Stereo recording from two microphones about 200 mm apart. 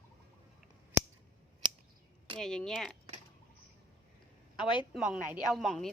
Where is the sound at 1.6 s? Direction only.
25° right (ahead or behind).